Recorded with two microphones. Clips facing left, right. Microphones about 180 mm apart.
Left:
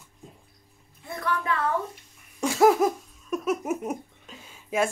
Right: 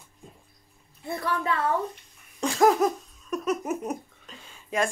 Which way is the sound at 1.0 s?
30° right (ahead or behind).